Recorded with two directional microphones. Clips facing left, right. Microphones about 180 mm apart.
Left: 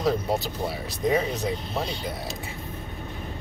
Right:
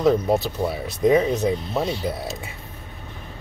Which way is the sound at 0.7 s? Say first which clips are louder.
Right 7 dB; 25° right (ahead or behind).